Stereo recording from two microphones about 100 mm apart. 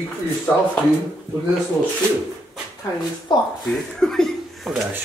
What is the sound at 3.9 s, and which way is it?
Chuckle, 5° left (ahead or behind).